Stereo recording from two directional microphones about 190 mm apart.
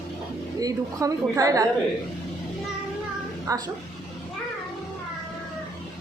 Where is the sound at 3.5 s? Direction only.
20° right (ahead or behind).